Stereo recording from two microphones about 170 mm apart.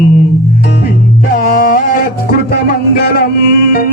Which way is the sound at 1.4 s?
60° left (ahead or behind).